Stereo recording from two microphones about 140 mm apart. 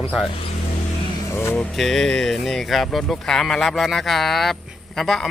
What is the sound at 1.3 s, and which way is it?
Speech, 20° left (ahead or behind).